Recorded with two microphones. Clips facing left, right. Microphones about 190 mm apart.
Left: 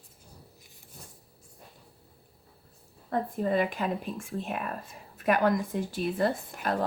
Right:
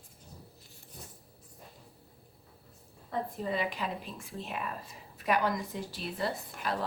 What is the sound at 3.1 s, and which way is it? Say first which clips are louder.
Speech: left 6 dB; 50° left (ahead or behind).